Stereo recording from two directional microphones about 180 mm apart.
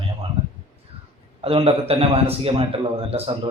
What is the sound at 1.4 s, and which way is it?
A man's voice, 30° right (ahead or behind).